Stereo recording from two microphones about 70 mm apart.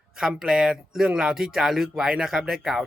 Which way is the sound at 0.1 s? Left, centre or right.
Centre.